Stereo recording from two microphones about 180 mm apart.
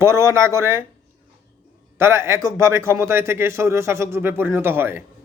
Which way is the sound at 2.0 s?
15° right (ahead or behind).